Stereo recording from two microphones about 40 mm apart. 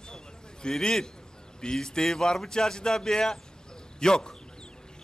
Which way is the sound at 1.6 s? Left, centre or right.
Centre.